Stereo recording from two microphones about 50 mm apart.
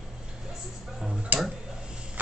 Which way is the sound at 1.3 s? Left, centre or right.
Right.